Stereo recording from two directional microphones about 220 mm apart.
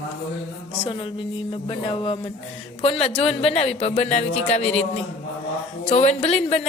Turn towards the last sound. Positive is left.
turn(degrees=30)  # may be behind; listen again after turning